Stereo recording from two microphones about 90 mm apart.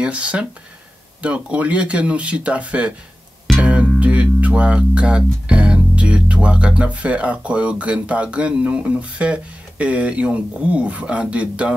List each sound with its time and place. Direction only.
0.0 s speech: 15° right (ahead or behind)